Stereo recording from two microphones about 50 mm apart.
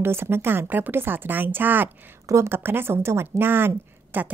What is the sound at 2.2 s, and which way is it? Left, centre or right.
Speech, right.